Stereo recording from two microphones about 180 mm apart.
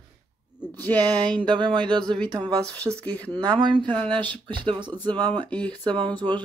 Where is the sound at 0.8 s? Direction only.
10° left (ahead or behind).